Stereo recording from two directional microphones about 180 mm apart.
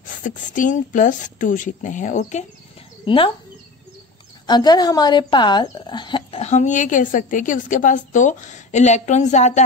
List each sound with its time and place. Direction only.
0.0 s a woman's voice: 45° left (ahead or behind)
3.1 s speech: 30° left (ahead or behind)
4.5 s speech: 25° left (ahead or behind); by 9.6 s 40° left (ahead or behind)